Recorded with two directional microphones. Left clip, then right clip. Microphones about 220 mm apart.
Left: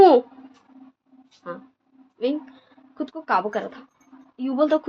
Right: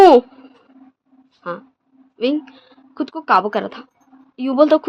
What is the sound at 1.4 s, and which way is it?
A woman's voice, 50° right (ahead or behind).